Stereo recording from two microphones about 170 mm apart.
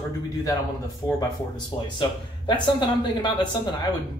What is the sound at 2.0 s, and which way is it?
Speech, 25° left (ahead or behind).